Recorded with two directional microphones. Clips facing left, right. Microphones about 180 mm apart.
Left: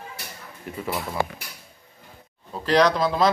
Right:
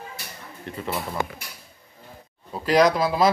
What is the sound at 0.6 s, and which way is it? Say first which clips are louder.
Speech: even; 5° left (ahead or behind).